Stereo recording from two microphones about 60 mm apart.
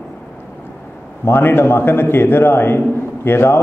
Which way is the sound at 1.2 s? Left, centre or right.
Left.